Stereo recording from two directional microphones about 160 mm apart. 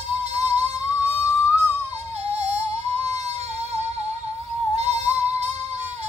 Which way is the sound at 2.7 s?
45° right (ahead or behind).